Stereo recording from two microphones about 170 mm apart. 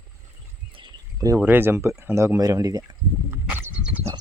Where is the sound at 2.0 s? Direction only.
15° right (ahead or behind).